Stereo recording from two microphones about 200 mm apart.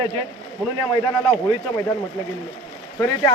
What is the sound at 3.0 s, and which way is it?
Speech, 15° left (ahead or behind).